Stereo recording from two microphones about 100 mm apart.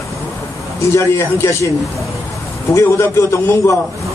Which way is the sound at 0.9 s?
30° left (ahead or behind).